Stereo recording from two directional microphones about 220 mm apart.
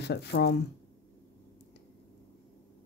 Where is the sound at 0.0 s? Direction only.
50° left (ahead or behind).